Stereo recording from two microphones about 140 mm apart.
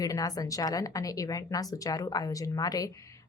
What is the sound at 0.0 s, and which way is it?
Speech, 25° left (ahead or behind).